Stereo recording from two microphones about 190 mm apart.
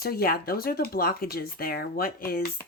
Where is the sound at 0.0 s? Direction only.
55° left (ahead or behind).